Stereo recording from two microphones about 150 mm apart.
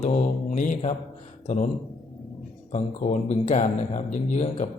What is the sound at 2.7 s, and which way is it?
Speech, 55° left (ahead or behind).